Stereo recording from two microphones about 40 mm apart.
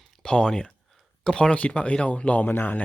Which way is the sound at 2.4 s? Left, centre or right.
Left.